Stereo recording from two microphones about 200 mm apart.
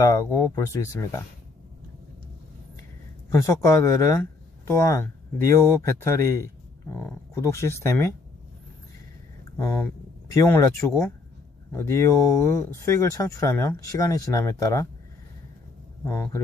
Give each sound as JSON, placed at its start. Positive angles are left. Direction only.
{"t": 0.0, "sound": "speech", "side_deg": 15}
{"t": 3.3, "sound": "speech", "side_deg": 15}
{"t": 9.6, "sound": "speech", "side_deg": 15}
{"t": 10.9, "sound": "speech", "side_deg": 5}
{"t": 16.0, "sound": "speech", "side_deg": 15}